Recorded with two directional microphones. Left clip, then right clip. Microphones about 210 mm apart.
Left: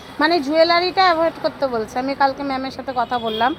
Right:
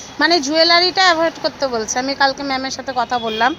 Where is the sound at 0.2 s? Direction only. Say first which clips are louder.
Right 1 dB; 5° right (ahead or behind).